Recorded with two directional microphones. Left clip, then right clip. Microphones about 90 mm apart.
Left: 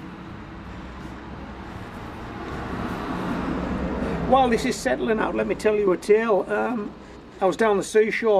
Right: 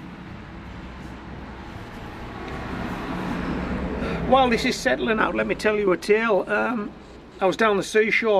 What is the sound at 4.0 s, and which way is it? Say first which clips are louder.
A man's voice: right 1 dB; 25° right (ahead or behind).